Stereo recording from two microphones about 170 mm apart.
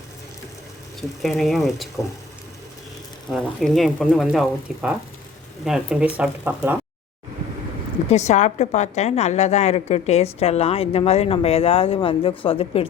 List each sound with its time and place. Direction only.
1.2 s speech: centre (ahead or behind)
3.3 s speech: centre (ahead or behind)
8.1 s a woman's voice: 45° left (ahead or behind)